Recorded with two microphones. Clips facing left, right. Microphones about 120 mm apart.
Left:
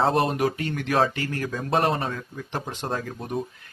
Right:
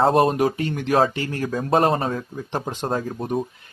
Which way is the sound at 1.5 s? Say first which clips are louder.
Right 5 dB; 35° right (ahead or behind).